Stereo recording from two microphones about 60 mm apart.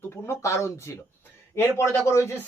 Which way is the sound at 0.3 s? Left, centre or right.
Left.